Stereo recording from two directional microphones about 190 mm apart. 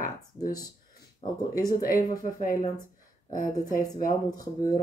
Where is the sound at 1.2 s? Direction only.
20° left (ahead or behind).